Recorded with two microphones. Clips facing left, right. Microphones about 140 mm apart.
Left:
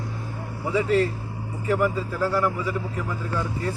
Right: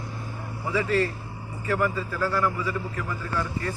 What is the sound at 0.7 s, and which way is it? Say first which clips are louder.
A man's voice: left 3 dB; 20° left (ahead or behind).